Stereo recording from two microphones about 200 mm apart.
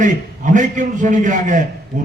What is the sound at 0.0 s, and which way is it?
A man's voice, 40° right (ahead or behind).